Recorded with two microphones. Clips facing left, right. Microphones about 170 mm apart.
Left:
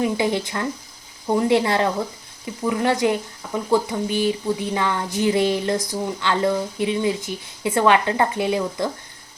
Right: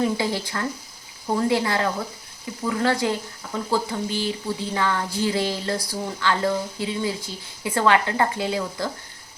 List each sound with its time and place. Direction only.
0.0 s speech: 20° left (ahead or behind)